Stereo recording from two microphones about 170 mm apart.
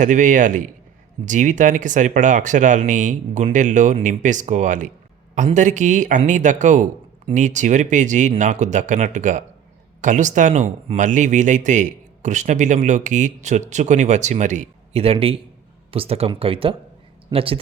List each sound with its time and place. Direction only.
0.0 s speech: 50° right (ahead or behind)